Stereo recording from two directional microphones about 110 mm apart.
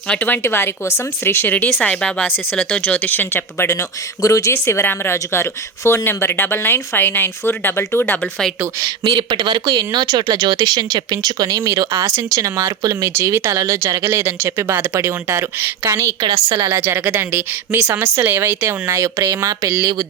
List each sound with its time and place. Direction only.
0.1 s speech: 15° left (ahead or behind)
8.8 s a woman's voice: 45° right (ahead or behind); by 16.1 s 25° right (ahead or behind)
16.2 s speech: 35° right (ahead or behind)
16.6 s a woman's voice: 25° right (ahead or behind)